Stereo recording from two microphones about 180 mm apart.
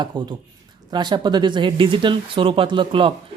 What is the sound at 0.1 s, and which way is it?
Speech, 25° right (ahead or behind).